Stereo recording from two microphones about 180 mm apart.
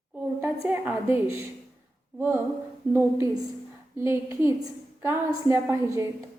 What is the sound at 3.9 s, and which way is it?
A woman's voice, 15° right (ahead or behind).